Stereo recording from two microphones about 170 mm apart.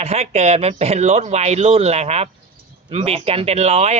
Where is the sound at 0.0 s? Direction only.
40° right (ahead or behind).